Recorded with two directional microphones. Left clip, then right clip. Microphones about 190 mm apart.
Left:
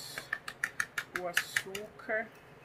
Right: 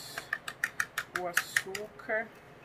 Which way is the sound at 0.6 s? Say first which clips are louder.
Right 2 dB; 5° right (ahead or behind).